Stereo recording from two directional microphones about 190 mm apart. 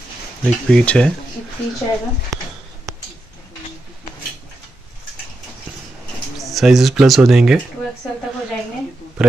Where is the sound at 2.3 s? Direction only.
15° right (ahead or behind).